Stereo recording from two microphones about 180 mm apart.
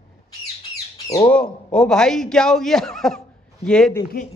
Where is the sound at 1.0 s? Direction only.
20° left (ahead or behind).